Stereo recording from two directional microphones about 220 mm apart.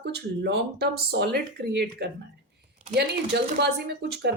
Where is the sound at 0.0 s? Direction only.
50° right (ahead or behind).